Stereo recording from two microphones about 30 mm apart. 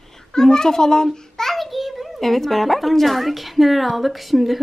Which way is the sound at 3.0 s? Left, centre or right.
Centre.